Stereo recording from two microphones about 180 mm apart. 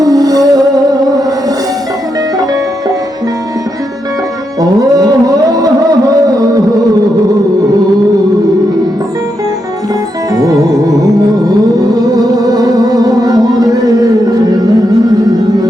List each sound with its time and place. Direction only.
0.0 s music: 20° right (ahead or behind)
4.6 s music: 20° right (ahead or behind)
10.3 s music: 20° right (ahead or behind)